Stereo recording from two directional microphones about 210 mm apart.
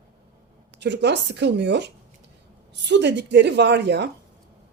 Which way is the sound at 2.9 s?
55° right (ahead or behind).